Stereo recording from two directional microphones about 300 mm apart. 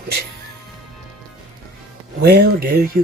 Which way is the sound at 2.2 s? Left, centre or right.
Right.